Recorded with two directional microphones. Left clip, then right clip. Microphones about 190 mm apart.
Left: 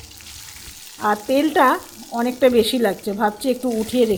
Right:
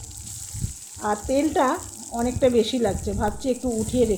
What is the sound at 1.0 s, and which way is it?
Frying, 20° left (ahead or behind).